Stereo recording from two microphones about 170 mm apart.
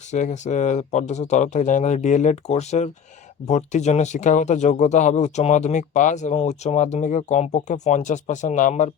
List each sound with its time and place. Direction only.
0.1 s speech: 45° left (ahead or behind)